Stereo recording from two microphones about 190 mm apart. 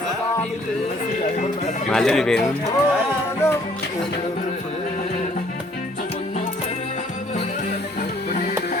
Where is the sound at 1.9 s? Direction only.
5° left (ahead or behind).